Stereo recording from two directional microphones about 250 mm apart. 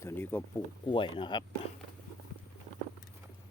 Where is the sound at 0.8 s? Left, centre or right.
Centre.